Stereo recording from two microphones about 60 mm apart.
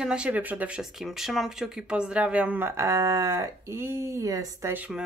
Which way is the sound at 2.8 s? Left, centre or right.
Right.